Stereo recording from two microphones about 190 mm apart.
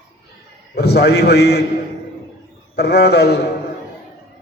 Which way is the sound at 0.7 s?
60° left (ahead or behind).